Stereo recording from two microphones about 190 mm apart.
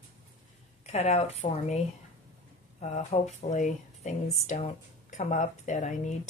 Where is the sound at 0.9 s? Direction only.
35° left (ahead or behind).